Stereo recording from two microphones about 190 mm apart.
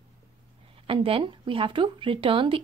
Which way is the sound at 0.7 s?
30° right (ahead or behind).